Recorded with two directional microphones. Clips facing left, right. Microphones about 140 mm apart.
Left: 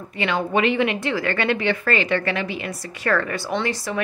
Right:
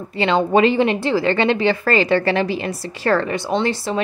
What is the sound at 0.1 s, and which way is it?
Speech, 30° right (ahead or behind).